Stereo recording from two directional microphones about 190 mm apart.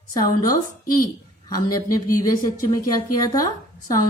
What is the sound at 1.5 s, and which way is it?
A woman's voice, 20° left (ahead or behind).